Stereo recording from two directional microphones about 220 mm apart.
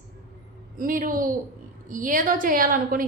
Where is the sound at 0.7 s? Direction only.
40° right (ahead or behind).